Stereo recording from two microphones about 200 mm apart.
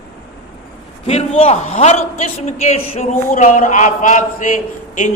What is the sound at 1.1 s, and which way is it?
A man's voice, 30° left (ahead or behind).